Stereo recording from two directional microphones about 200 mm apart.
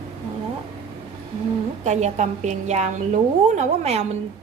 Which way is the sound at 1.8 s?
35° right (ahead or behind).